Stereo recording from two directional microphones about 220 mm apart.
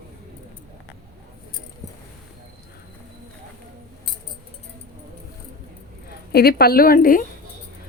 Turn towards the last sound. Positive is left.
turn(degrees=40)  # may be behind; listen again after turning